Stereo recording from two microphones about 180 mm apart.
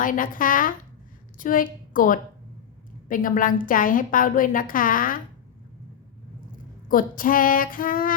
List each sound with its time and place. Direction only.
0.0 s a woman's voice: 50° left (ahead or behind)
6.8 s a woman's voice: 50° left (ahead or behind)